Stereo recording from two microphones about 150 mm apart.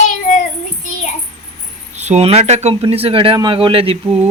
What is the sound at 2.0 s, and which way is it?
A man's voice, 45° right (ahead or behind).